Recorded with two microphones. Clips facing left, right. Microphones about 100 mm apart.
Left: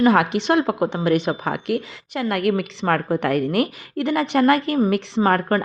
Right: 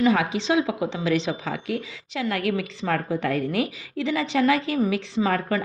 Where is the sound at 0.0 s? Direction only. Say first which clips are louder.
Left 4 dB; 65° left (ahead or behind).